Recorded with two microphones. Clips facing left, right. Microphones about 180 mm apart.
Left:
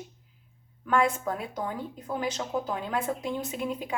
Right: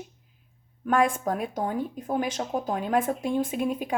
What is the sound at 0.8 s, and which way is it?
Speech, 50° right (ahead or behind).